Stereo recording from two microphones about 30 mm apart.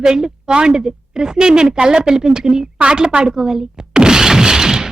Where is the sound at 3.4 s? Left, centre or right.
Centre.